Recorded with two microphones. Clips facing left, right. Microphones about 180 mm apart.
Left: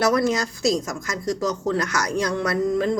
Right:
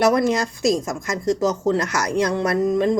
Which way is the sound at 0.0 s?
20° right (ahead or behind).